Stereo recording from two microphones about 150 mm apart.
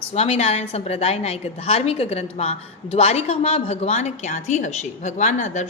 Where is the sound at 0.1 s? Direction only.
45° left (ahead or behind).